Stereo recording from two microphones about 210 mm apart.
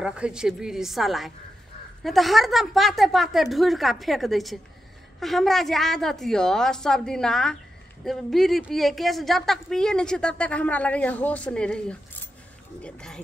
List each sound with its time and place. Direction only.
0.0 s a woman's voice: 5° right (ahead or behind)